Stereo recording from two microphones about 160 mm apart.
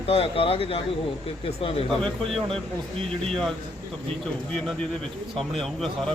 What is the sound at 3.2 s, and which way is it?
Speech, 5° left (ahead or behind).